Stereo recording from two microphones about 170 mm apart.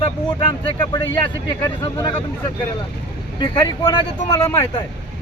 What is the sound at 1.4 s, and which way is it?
Speech, 20° left (ahead or behind).